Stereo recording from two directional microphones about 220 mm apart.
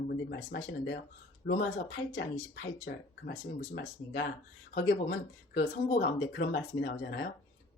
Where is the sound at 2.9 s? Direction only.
40° left (ahead or behind).